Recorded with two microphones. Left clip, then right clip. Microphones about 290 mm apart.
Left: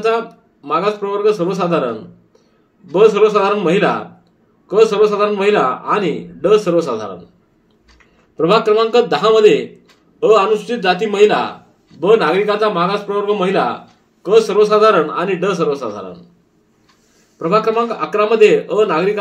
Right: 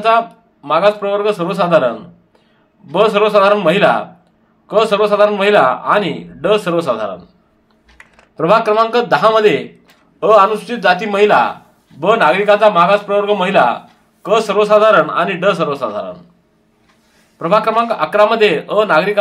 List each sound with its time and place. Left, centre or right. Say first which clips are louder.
0.0 s a man's voice: right 4 dB; right
2.9 s a man's voice: left 1 dB; right
8.4 s a man's voice: right 1 dB; right
17.4 s a man's voice: right 2 dB; right